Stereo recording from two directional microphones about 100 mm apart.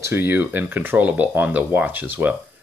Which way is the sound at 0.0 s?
20° right (ahead or behind).